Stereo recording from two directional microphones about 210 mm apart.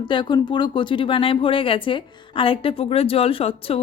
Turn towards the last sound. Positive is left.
turn(degrees=25)  # may be behind; listen again after turning